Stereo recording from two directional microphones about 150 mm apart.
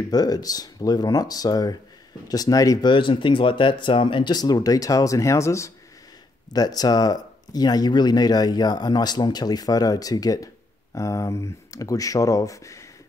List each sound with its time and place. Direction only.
0.1 s speech: 25° left (ahead or behind)